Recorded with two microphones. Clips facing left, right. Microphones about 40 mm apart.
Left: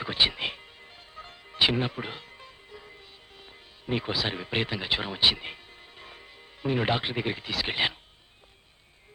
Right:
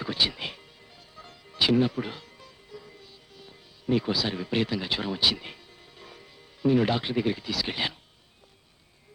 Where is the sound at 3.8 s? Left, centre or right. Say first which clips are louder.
Right 3 dB; left.